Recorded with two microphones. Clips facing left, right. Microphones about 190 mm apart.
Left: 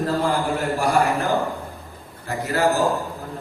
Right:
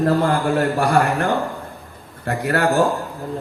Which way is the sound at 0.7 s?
65° right (ahead or behind).